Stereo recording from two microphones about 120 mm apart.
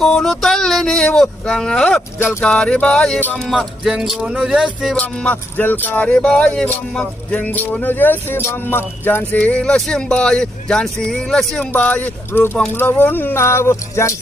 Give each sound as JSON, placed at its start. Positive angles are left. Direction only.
{"t": 0.0, "sound": "speech", "side_deg": 0}
{"t": 2.1, "sound": "speech", "side_deg": 20}
{"t": 2.4, "sound": "speech", "side_deg": 10}
{"t": 3.5, "sound": "speech", "side_deg": -5}
{"t": 4.9, "sound": "speech", "side_deg": 10}
{"t": 11.7, "sound": "speech", "side_deg": 15}